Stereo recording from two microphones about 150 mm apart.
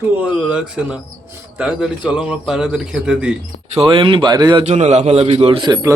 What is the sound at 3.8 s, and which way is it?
Speech, 35° right (ahead or behind).